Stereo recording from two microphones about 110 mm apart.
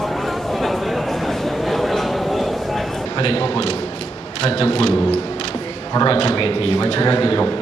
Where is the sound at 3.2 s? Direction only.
50° left (ahead or behind).